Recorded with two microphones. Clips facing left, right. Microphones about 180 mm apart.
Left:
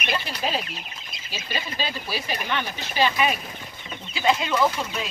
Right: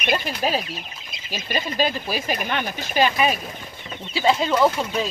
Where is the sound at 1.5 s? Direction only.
45° right (ahead or behind).